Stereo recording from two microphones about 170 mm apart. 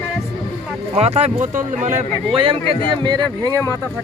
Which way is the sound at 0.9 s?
40° right (ahead or behind).